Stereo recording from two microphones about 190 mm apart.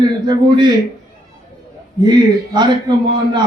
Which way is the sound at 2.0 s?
20° right (ahead or behind).